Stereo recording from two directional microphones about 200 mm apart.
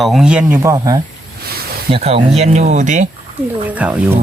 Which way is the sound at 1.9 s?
30° right (ahead or behind).